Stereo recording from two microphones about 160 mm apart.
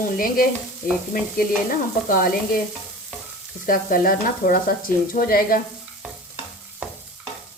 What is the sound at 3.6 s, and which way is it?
Speech, 60° left (ahead or behind).